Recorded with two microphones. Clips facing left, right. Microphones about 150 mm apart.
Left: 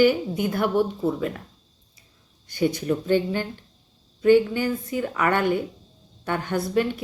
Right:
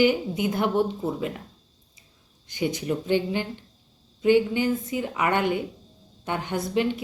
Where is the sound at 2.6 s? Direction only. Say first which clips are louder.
Left 3 dB; 15° right (ahead or behind).